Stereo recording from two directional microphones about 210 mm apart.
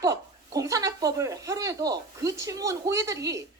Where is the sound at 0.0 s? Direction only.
15° right (ahead or behind).